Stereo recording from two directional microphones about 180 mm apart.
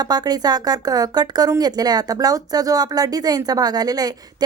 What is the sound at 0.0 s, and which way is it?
Speech, 20° right (ahead or behind).